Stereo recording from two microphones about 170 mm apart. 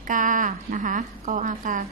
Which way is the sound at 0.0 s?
50° right (ahead or behind).